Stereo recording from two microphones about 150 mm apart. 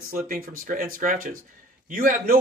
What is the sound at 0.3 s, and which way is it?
Speech, 65° right (ahead or behind).